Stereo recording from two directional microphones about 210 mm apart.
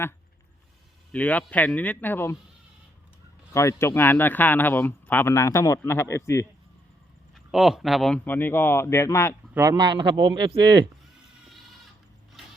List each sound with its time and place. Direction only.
1.1 s speech: 5° left (ahead or behind)
3.5 s speech: 15° left (ahead or behind)
7.3 s speech: centre (ahead or behind)
9.6 s speech: 20° right (ahead or behind)